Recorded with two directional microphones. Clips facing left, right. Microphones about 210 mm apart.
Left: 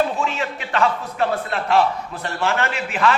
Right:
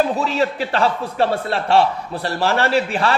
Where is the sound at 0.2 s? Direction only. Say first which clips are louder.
Right 5 dB; 35° right (ahead or behind).